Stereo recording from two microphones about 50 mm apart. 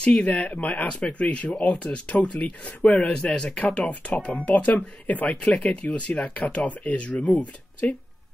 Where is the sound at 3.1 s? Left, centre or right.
Centre.